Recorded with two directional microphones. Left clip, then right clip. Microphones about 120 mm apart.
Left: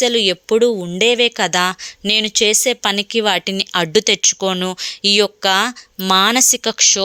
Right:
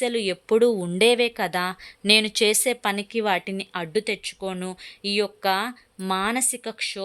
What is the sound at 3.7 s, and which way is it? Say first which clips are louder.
A woman's voice: left 11 dB; 55° left (ahead or behind).